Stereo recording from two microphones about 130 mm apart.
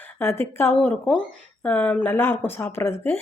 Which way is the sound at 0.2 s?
20° left (ahead or behind).